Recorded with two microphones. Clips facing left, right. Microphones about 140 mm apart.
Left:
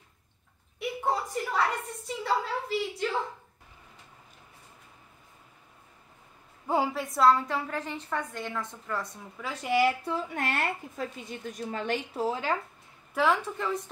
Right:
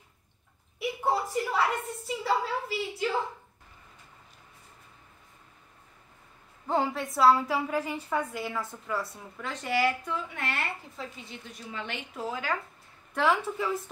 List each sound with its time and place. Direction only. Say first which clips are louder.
0.7 s a woman's voice: right 1 dB; 5° right (ahead or behind)
6.7 s a woman's voice: even; 5° left (ahead or behind)
9.5 s speech: left 3 dB; 15° left (ahead or behind)
10.0 s speech: left 3 dB; 40° left (ahead or behind)
12.3 s speech: left 2 dB; 25° left (ahead or behind)
13.1 s a woman's voice: even; centre (ahead or behind)